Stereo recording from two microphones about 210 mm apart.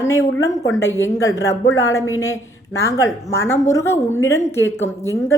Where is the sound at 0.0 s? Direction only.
15° left (ahead or behind).